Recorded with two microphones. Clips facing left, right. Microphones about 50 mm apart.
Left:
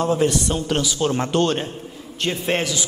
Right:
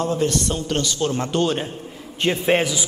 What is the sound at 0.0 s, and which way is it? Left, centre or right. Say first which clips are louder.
A man's voice: left 2 dB; centre.